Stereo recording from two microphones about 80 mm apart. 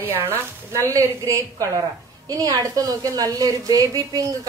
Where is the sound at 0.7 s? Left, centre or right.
Right.